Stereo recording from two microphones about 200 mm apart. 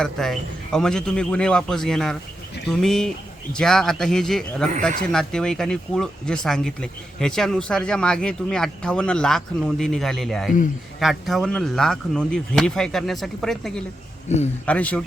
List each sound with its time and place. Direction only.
0.0 s speech: centre (ahead or behind)
14.3 s speech: 35° left (ahead or behind)
14.7 s speech: 5° left (ahead or behind)